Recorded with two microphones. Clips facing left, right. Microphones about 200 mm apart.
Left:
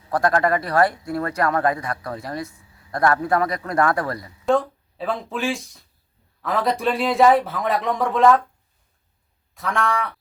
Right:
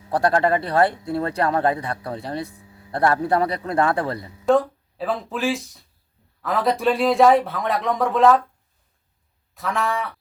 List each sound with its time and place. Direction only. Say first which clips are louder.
0.1 s a man's voice: right 1 dB; 30° right (ahead or behind)
4.4 s speech: right 2 dB; centre (ahead or behind)
9.6 s speech: left 1 dB; centre (ahead or behind)